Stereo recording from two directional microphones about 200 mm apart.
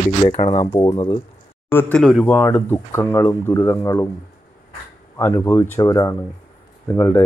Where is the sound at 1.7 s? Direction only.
10° left (ahead or behind).